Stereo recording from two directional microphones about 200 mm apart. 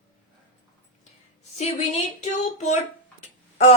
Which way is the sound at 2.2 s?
35° left (ahead or behind).